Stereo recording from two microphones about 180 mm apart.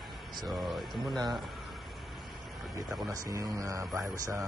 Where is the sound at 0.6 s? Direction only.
Centre (ahead or behind).